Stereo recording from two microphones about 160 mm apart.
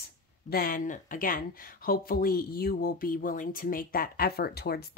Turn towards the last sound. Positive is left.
turn(degrees=80)